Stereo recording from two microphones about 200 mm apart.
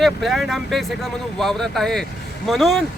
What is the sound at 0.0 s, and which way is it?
Speech, centre (ahead or behind).